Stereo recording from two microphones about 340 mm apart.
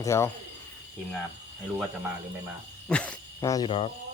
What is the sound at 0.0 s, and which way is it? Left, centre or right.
Speech, centre.